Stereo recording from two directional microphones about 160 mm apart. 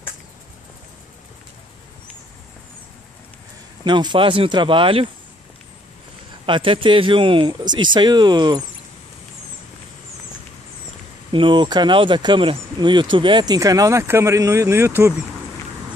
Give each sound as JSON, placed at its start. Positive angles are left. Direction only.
{"t": 3.8, "sound": "speech", "side_deg": -30}
{"t": 6.4, "sound": "speech", "side_deg": -35}
{"t": 11.3, "sound": "speech", "side_deg": -30}